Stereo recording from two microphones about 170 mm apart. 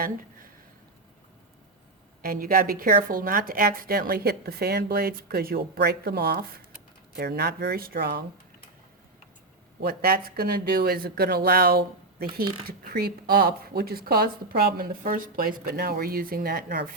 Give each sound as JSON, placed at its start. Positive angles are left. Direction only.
{"t": 2.2, "sound": "a woman's voice", "side_deg": -55}
{"t": 9.8, "sound": "a woman's voice", "side_deg": -60}